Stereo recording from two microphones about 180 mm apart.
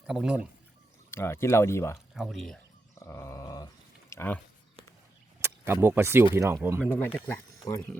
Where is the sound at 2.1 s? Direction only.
Centre (ahead or behind).